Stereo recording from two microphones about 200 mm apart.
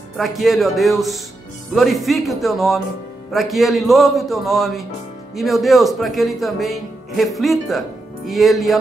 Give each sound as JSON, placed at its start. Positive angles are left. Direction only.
{"t": 0.2, "sound": "speech", "side_deg": 0}